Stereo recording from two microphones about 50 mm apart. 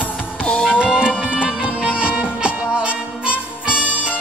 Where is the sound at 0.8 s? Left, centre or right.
Centre.